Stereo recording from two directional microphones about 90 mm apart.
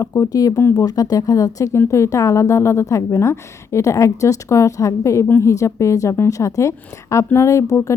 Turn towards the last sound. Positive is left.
turn(degrees=35)  # may be behind; listen again after turning